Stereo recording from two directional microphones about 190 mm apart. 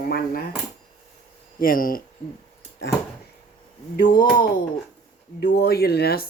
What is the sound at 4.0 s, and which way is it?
Speech, 50° left (ahead or behind).